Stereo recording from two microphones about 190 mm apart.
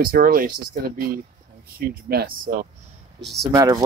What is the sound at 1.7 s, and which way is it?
Speech, 55° right (ahead or behind).